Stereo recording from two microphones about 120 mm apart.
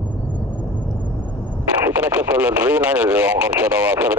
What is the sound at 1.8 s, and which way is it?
Speech, 10° right (ahead or behind).